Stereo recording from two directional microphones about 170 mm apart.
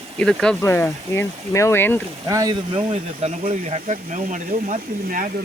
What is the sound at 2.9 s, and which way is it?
Speech, 40° right (ahead or behind).